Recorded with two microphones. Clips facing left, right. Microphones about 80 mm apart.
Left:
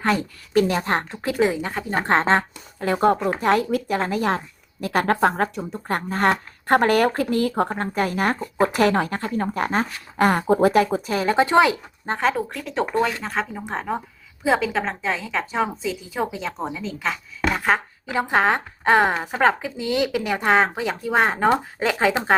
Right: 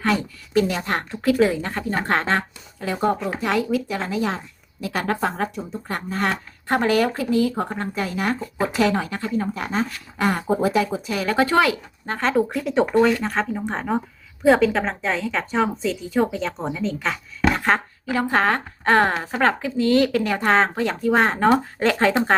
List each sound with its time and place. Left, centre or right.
0.0 s a woman's voice: left
0.8 s a woman's voice: left
1.6 s a woman's voice: centre
2.0 s a woman's voice: left
2.8 s speech: left
11.1 s a woman's voice: left
12.3 s a woman's voice: centre
18.0 s a woman's voice: centre